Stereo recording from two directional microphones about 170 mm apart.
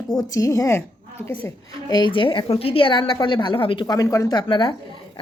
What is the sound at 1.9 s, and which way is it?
A woman's voice, 25° left (ahead or behind).